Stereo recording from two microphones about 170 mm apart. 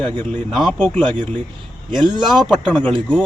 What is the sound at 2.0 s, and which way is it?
Speech, 25° right (ahead or behind).